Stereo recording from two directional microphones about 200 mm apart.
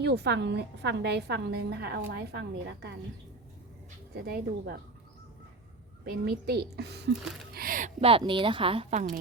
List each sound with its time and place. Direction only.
0.0 s a woman's voice: 55° right (ahead or behind)
4.1 s a woman's voice: 50° right (ahead or behind)
6.1 s a woman's voice: 50° right (ahead or behind)
7.5 s speech: 45° right (ahead or behind)